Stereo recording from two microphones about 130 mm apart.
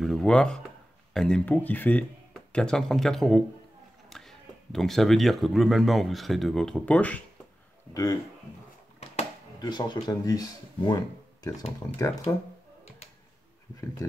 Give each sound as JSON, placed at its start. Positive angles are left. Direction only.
{"t": 0.0, "sound": "a sound", "side_deg": 5}
{"t": 1.1, "sound": "speech", "side_deg": 5}
{"t": 7.9, "sound": "speech", "side_deg": 30}
{"t": 9.6, "sound": "speech", "side_deg": 35}
{"t": 12.3, "sound": "speech", "side_deg": 25}